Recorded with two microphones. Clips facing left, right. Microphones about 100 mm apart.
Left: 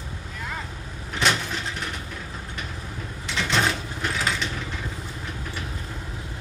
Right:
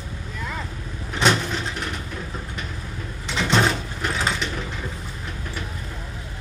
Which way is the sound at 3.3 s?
20° right (ahead or behind).